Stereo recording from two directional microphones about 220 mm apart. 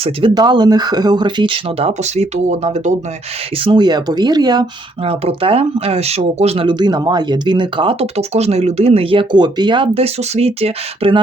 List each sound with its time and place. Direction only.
0.0 s speech: 20° right (ahead or behind)
3.6 s speech: 20° right (ahead or behind)